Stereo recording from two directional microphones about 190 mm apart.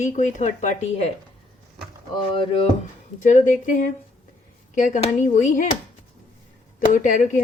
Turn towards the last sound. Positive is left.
turn(degrees=40)  # may be behind; listen again after turning